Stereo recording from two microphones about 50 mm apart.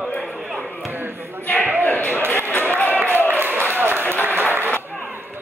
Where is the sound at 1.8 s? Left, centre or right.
Left.